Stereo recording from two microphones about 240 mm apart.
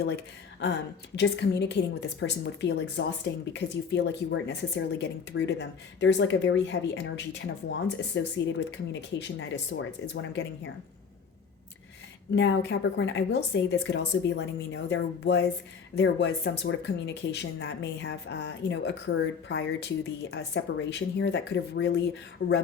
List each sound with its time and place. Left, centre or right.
1.1 s speech: left
12.4 s speech: left